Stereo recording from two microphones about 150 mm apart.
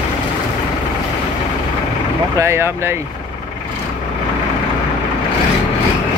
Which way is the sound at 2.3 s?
20° right (ahead or behind).